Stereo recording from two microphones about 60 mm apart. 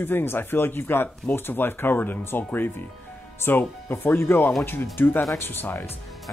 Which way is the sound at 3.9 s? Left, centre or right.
Left.